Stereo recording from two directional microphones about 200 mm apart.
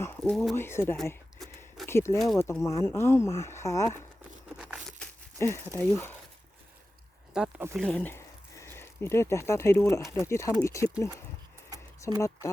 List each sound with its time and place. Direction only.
0.0 s speech: 10° left (ahead or behind)
0.5 s speech: 10° left (ahead or behind)
4.5 s crumpling: 5° right (ahead or behind)
4.9 s crumpling: 15° left (ahead or behind)
7.3 s speech: 5° right (ahead or behind); by 10.9 s 15° left (ahead or behind)
12.0 s speech: 15° left (ahead or behind)